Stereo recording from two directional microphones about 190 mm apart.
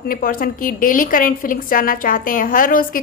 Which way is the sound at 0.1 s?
50° left (ahead or behind).